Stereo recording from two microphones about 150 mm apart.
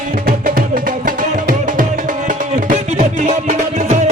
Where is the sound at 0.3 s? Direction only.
70° right (ahead or behind).